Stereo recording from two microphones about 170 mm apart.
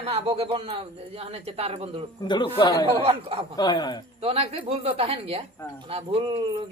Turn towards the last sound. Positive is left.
turn(degrees=-35)  # may be behind; listen again after turning